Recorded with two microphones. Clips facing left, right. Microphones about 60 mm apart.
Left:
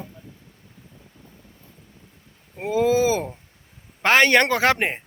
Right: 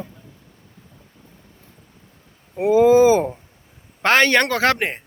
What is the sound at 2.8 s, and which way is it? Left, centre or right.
Speech, right.